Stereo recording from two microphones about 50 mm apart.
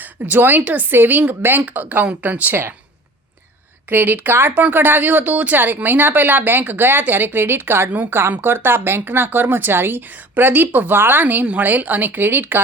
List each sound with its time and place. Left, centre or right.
0.0 s a woman's voice: right
3.8 s a woman's voice: right